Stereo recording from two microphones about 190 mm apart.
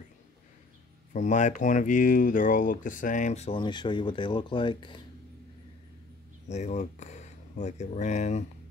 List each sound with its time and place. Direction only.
1.1 s speech: 40° left (ahead or behind); by 5.0 s 25° left (ahead or behind)
6.5 s speech: 40° left (ahead or behind)